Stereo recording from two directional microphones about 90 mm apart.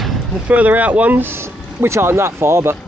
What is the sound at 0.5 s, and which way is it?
Speech, 15° right (ahead or behind).